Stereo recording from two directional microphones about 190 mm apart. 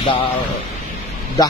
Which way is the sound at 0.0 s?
25° left (ahead or behind).